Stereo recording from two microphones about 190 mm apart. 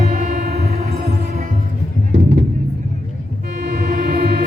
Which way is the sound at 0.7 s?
35° right (ahead or behind).